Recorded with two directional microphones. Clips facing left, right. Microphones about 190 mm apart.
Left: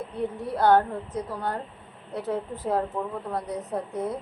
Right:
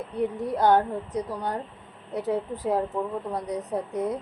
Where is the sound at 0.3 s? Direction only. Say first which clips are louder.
Left 1 dB; 20° right (ahead or behind).